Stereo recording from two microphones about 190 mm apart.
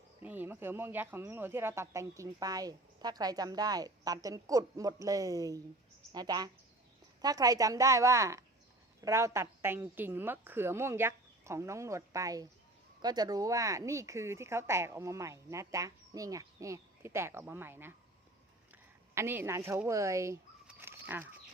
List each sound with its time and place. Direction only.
0.2 s speech: 10° right (ahead or behind)
19.1 s speech: 10° right (ahead or behind)